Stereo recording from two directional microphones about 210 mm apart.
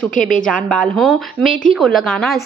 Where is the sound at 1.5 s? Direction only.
40° left (ahead or behind).